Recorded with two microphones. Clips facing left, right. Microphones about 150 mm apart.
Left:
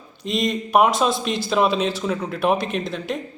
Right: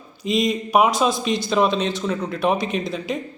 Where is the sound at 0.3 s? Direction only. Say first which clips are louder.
Right 2 dB; centre (ahead or behind).